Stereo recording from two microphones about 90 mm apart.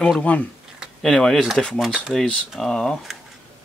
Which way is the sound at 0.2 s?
15° left (ahead or behind).